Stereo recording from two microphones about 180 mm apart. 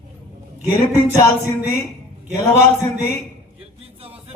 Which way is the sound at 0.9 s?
15° left (ahead or behind).